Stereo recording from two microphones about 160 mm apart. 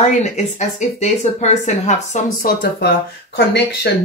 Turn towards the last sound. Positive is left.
turn(degrees=90)